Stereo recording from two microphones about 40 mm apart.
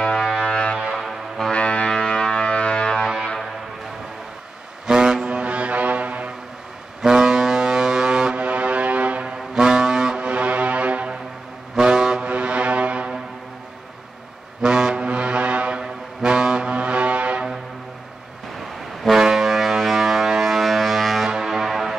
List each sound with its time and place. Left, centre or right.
0.3 s music: centre
1.5 s music: left
2.0 s music: centre
4.8 s vehicle: centre; by 6.3 s right
7.0 s foghorn: centre
8.4 s foghorn: right; by 10.2 s centre
10.2 s music: right
11.7 s vehicle: centre
12.3 s brass instrument: right
14.6 s vehicle: centre
15.0 s foghorn: right
15.8 s a sound: centre
19.0 s foghorn: centre
21.3 s vehicle: centre